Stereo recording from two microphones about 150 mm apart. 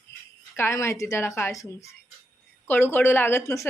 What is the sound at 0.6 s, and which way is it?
Speech, 15° left (ahead or behind).